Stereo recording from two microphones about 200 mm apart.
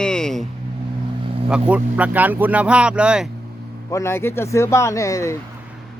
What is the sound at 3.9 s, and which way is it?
Speech, 15° left (ahead or behind).